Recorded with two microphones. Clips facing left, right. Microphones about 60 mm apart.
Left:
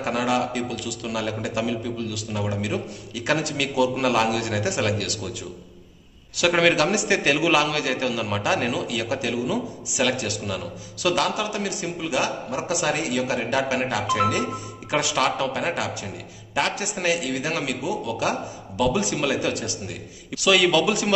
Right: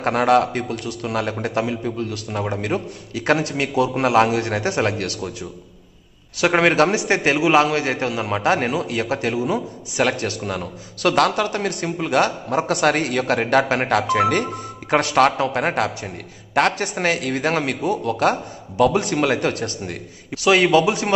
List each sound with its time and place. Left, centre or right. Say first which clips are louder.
0.0 s a man's voice: right 7 dB; right
6.3 s a man's voice: right 3 dB; right
9.9 s a man's voice: right 3 dB; right
11.0 s a man's voice: right 5 dB; right
20.2 s a man's voice: right 3 dB; right